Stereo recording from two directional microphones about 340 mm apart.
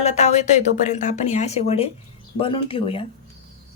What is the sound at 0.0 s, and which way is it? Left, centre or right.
Speech, centre.